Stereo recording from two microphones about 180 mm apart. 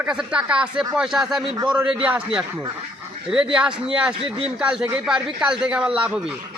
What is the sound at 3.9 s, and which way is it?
A man's voice, 5° right (ahead or behind).